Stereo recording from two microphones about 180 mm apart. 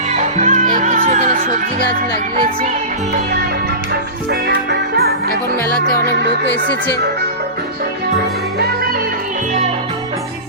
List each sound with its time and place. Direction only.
0.2 s music: 45° right (ahead or behind)
4.3 s music: 60° right (ahead or behind)
5.9 s music: 60° left (ahead or behind)